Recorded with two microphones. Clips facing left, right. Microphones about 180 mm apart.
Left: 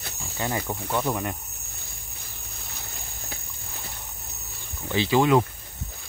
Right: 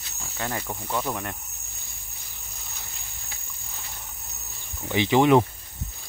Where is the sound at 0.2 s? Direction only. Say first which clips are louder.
Left 2 dB; 5° left (ahead or behind).